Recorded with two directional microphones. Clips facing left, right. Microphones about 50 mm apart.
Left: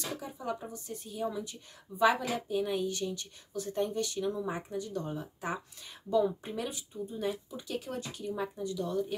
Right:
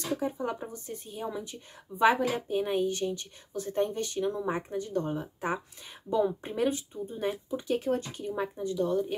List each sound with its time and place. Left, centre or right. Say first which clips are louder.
0.2 s a woman's voice: right 5 dB; right